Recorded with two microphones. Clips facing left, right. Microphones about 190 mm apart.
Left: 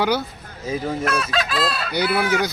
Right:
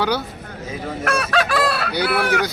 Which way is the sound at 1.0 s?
70° right (ahead or behind).